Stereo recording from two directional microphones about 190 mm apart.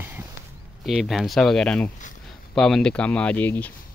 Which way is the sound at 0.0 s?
10° right (ahead or behind).